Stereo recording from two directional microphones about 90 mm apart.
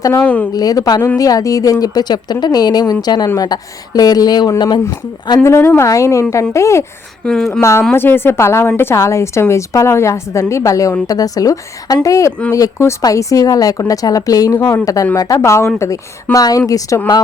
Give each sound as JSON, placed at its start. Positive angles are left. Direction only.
{"t": 0.2, "sound": "a woman's voice", "side_deg": 15}
{"t": 0.5, "sound": "a woman's voice", "side_deg": 45}
{"t": 5.4, "sound": "a woman's voice", "side_deg": 30}
{"t": 7.3, "sound": "a woman's voice", "side_deg": 5}
{"t": 7.6, "sound": "a woman's voice", "side_deg": 30}
{"t": 15.4, "sound": "a woman's voice", "side_deg": 30}
{"t": 16.3, "sound": "a woman's voice", "side_deg": 40}